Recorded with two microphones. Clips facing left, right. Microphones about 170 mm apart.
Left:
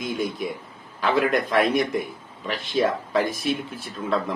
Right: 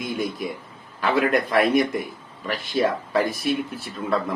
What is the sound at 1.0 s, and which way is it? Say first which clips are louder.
A man's voice: right 1 dB; 5° right (ahead or behind).